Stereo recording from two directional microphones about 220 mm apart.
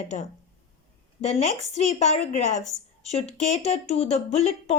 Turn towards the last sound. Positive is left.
turn(degrees=30)  # may be behind; listen again after turning